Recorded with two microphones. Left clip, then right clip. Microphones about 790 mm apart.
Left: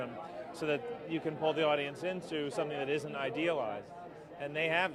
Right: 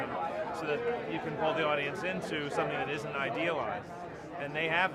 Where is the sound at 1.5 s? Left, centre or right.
Right.